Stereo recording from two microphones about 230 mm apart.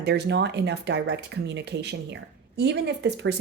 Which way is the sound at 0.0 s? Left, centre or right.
Right.